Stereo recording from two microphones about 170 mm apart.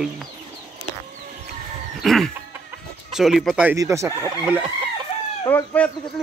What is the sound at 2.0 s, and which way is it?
Chicken, centre (ahead or behind).